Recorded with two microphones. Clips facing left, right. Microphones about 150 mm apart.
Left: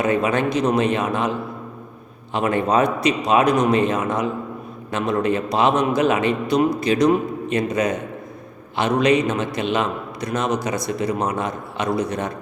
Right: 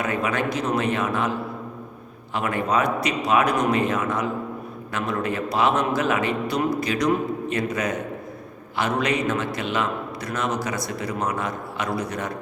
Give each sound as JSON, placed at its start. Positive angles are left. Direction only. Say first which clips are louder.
{"t": 0.0, "sound": "a man's voice", "louder": "left 5 dB", "side_deg": 20}
{"t": 2.3, "sound": "a man's voice", "louder": "left 4 dB", "side_deg": 25}